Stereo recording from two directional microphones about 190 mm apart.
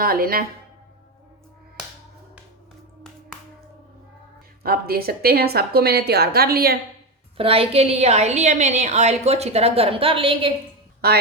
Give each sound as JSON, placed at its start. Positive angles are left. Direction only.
{"t": 0.0, "sound": "a woman's voice", "side_deg": -50}
{"t": 4.6, "sound": "a woman's voice", "side_deg": -55}
{"t": 7.3, "sound": "a woman's voice", "side_deg": -30}
{"t": 11.0, "sound": "a woman's voice", "side_deg": -55}